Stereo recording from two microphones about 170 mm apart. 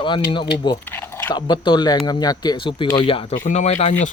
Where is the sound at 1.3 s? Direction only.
25° left (ahead or behind).